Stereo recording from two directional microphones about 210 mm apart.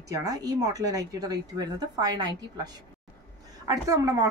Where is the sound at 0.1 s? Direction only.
15° right (ahead or behind).